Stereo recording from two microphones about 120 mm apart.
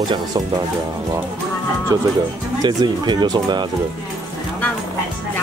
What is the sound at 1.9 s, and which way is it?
Speech, 30° right (ahead or behind).